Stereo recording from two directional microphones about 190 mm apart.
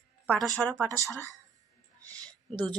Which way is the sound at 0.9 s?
15° right (ahead or behind).